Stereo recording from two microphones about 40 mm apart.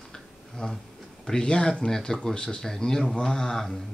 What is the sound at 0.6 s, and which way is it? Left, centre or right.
Speech, centre.